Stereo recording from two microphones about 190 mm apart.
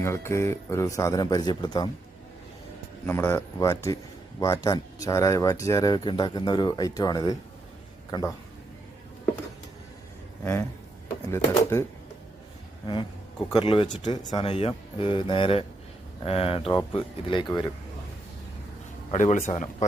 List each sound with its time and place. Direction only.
0.0 s a man's voice: 15° left (ahead or behind)
3.1 s a man's voice: 15° left (ahead or behind)
10.4 s a man's voice: 10° left (ahead or behind)
13.5 s speech: 25° left (ahead or behind)
19.1 s speech: 40° left (ahead or behind)